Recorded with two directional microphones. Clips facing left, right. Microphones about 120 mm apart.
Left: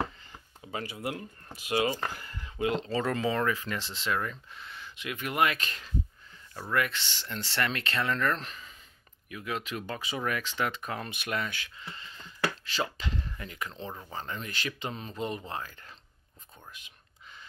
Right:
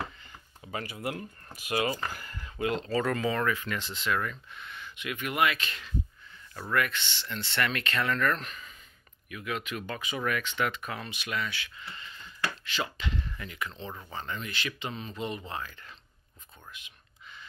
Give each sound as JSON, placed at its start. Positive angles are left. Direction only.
{"t": 0.7, "sound": "speech", "side_deg": 20}
{"t": 2.0, "sound": "a sound", "side_deg": 25}
{"t": 2.6, "sound": "speech", "side_deg": 25}
{"t": 6.7, "sound": "speech", "side_deg": 25}
{"t": 11.1, "sound": "speech", "side_deg": 50}
{"t": 11.7, "sound": "speech", "side_deg": 30}
{"t": 16.7, "sound": "whispering", "side_deg": 40}